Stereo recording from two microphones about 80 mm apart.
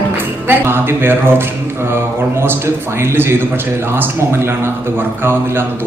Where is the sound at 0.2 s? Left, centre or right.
Right.